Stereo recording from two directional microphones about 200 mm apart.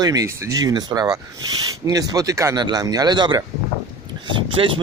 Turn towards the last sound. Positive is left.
turn(degrees=-25)  # may be behind; listen again after turning